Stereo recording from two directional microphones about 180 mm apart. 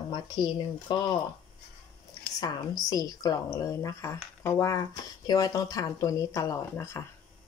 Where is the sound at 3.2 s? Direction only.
20° left (ahead or behind).